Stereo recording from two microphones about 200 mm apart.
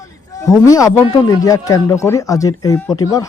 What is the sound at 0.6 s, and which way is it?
Speech, 15° left (ahead or behind).